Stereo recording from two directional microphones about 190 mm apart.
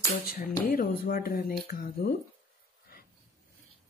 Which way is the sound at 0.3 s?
45° left (ahead or behind).